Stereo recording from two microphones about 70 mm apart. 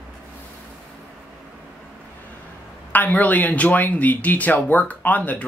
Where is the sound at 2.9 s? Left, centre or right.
Left.